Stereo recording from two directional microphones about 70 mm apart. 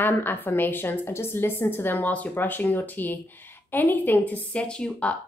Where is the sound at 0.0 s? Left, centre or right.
Left.